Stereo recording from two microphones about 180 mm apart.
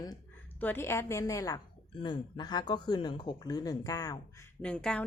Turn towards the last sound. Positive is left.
turn(degrees=5)  # may be behind; listen again after turning